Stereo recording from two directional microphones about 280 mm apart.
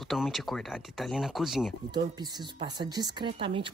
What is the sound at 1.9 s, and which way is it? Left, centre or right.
Speech, centre.